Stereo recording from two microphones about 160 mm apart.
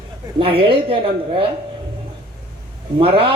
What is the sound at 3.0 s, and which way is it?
Speech, 35° right (ahead or behind).